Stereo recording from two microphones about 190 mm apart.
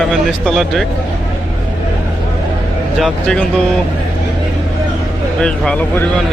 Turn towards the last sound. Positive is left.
turn(degrees=5)  # may be behind; listen again after turning